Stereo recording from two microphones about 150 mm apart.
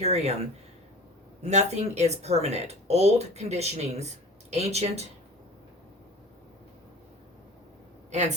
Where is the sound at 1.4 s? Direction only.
45° right (ahead or behind).